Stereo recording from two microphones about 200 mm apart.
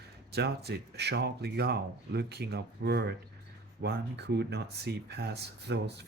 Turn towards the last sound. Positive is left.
turn(degrees=-55)  # may be behind; listen again after turning